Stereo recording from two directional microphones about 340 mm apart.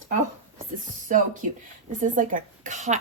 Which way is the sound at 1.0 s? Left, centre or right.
Right.